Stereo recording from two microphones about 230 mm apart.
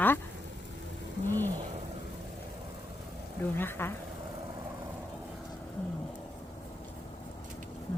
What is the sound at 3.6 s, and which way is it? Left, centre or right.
Speech, centre.